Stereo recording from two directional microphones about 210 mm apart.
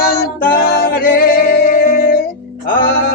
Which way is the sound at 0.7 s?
45° left (ahead or behind).